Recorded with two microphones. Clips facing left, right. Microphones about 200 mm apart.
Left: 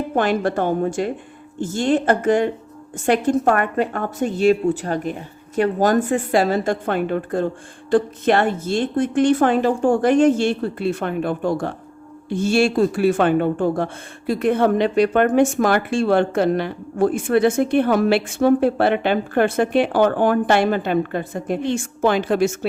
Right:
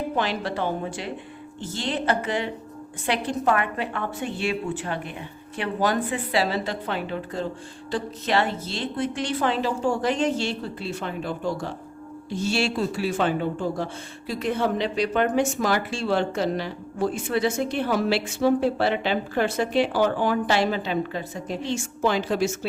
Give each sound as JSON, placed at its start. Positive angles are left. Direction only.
{"t": 0.2, "sound": "a woman's voice", "side_deg": 50}